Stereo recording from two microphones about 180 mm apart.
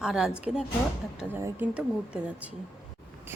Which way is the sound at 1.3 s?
10° right (ahead or behind).